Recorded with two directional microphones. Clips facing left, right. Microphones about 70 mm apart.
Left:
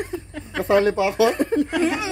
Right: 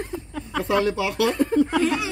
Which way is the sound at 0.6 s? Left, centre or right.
Left.